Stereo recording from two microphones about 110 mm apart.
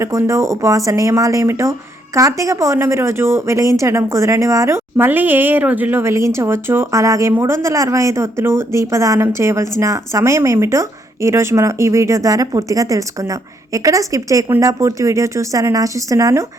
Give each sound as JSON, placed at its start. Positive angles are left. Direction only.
{"t": 0.0, "sound": "speech", "side_deg": -25}